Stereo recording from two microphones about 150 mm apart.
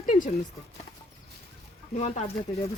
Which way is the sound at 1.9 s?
55° left (ahead or behind).